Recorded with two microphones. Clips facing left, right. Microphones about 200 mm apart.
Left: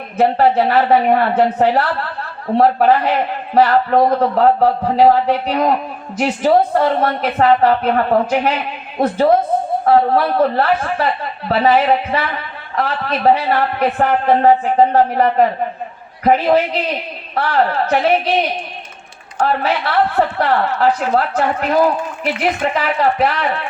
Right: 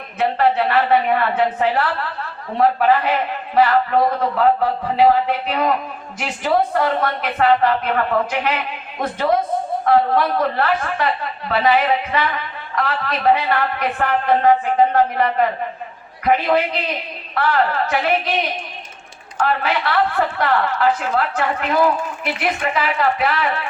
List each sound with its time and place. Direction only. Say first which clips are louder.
0.2 s a man's voice: left 4 dB; 40° left (ahead or behind)
19.4 s a man's voice: left 3 dB; 40° left (ahead or behind)